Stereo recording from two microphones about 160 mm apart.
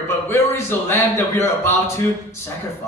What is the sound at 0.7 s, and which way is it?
Speech, 15° left (ahead or behind).